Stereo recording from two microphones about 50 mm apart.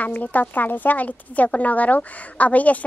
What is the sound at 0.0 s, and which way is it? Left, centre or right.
Speech, left.